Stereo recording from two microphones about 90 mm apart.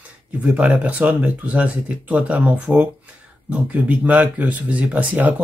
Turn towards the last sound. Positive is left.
turn(degrees=-20)  # may be behind; listen again after turning